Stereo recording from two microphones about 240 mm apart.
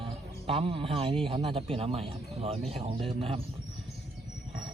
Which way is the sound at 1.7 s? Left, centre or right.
Right.